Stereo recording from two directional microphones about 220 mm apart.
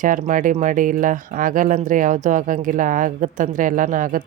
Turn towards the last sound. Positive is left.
turn(degrees=-35)  # may be behind; listen again after turning